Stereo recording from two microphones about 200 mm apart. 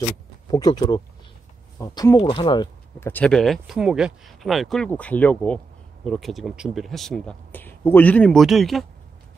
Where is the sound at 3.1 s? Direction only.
5° left (ahead or behind).